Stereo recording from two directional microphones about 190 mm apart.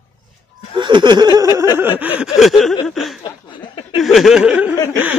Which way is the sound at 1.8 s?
10° right (ahead or behind).